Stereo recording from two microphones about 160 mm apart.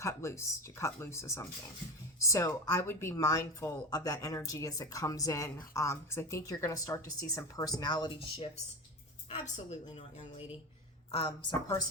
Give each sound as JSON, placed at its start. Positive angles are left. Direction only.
{"t": 0.0, "sound": "speech", "side_deg": 15}
{"t": 9.3, "sound": "a woman's voice", "side_deg": 40}